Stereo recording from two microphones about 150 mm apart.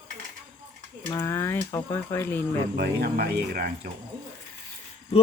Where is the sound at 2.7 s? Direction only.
90° right.